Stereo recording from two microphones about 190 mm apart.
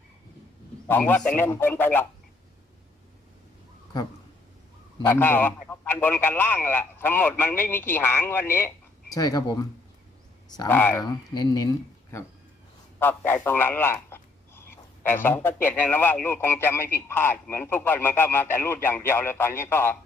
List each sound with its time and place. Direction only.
0.9 s speech: 10° left (ahead or behind)
5.0 s speech: 10° left (ahead or behind)
10.6 s speech: 10° left (ahead or behind)
11.0 s speech: 20° left (ahead or behind)
13.0 s speech: 10° left (ahead or behind)